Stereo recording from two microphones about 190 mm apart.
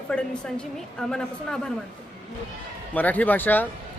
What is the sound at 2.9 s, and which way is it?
Speech, 10° left (ahead or behind).